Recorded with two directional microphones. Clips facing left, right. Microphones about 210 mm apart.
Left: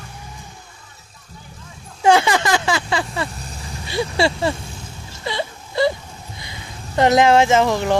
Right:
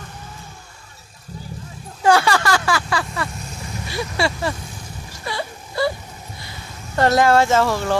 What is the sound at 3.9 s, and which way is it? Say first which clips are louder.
Speech: left 4 dB; 25° left (ahead or behind).